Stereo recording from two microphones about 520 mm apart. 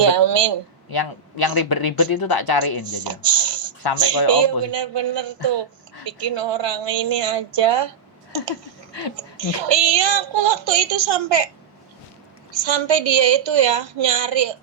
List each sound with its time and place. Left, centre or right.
0.1 s a woman's voice: right
0.9 s speech: left
2.9 s a woman's voice: right
9.6 s a woman's voice: right
12.5 s a woman's voice: right